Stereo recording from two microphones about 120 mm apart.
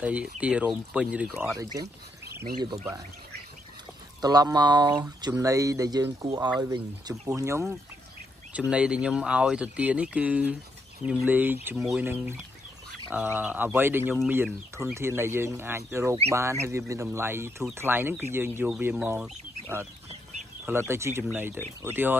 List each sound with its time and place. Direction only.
0.0 s speech: 10° right (ahead or behind)
1.5 s speech: 25° right (ahead or behind)
4.2 s speech: 35° right (ahead or behind)
8.5 s speech: 10° right (ahead or behind)
20.6 s speech: 20° right (ahead or behind)